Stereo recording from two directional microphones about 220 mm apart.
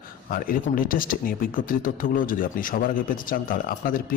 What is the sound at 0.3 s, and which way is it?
A man's voice, 40° left (ahead or behind).